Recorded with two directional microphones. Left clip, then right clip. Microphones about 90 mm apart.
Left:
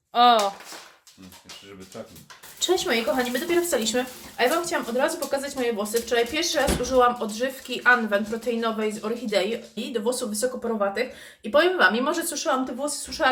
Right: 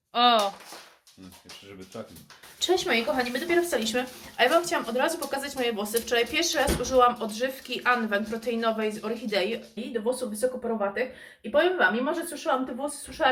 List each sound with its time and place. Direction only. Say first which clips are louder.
0.1 s speech: left 4 dB; 20° left (ahead or behind)
2.6 s a woman's voice: left 1 dB; 20° left (ahead or behind)
3.9 s speech: left 1 dB; 5° left (ahead or behind)
9.7 s speech: left 3 dB; 35° left (ahead or behind)
10.6 s a woman's voice: left 3 dB; 20° left (ahead or behind)
11.5 s a woman's voice: left 3 dB; 30° left (ahead or behind)